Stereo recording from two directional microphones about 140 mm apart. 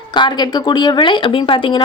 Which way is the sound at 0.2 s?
30° left (ahead or behind).